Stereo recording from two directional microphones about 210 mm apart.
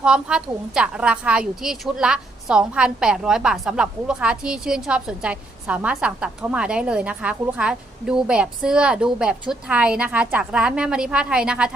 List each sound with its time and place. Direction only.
0.0 s a woman's voice: 5° right (ahead or behind)